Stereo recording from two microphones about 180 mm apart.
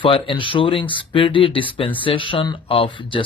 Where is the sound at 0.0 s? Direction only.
30° left (ahead or behind).